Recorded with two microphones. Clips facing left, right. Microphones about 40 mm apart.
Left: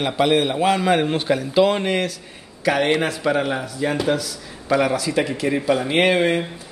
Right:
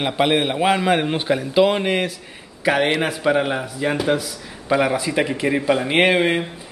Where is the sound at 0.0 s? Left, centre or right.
Right.